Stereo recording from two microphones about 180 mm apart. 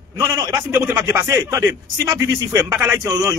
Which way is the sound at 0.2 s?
20° right (ahead or behind).